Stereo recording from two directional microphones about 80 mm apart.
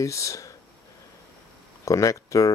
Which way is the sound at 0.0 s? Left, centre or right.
Left.